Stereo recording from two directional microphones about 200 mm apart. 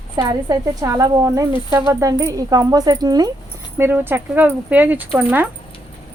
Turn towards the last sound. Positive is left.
turn(degrees=-10)  # may be behind; listen again after turning